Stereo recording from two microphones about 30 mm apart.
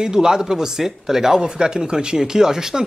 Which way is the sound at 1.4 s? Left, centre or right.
Right.